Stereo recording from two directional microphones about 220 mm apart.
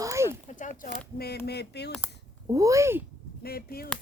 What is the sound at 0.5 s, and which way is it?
Speech, 35° left (ahead or behind).